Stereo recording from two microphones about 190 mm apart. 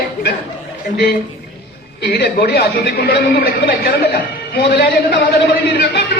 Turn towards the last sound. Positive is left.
turn(degrees=55)  # may be behind; listen again after turning